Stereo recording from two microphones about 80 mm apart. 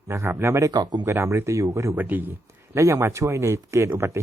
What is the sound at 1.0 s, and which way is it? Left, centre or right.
Speech, right.